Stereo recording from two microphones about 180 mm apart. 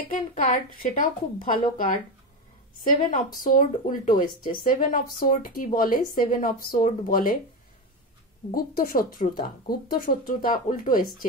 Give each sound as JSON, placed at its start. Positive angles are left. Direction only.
{"t": 0.1, "sound": "a woman's voice", "side_deg": 50}
{"t": 8.5, "sound": "a woman's voice", "side_deg": 55}